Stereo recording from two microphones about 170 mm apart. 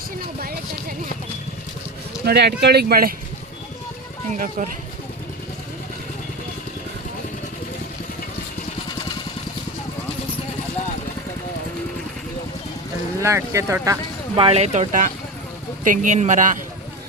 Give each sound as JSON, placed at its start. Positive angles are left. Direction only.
{"t": 2.2, "sound": "speech", "side_deg": -70}
{"t": 4.4, "sound": "a man's voice", "side_deg": -50}
{"t": 13.2, "sound": "speech", "side_deg": -15}
{"t": 14.3, "sound": "a man's voice", "side_deg": -35}